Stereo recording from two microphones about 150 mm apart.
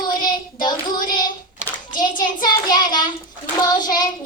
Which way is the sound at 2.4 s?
30° left (ahead or behind).